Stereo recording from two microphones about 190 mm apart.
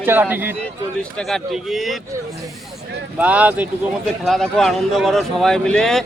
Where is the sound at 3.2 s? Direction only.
5° right (ahead or behind).